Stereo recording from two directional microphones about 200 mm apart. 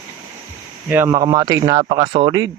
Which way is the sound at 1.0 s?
20° right (ahead or behind).